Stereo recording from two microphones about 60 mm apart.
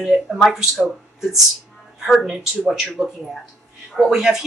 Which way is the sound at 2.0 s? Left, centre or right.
Centre.